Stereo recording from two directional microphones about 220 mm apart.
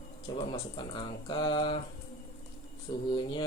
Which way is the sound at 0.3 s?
20° left (ahead or behind).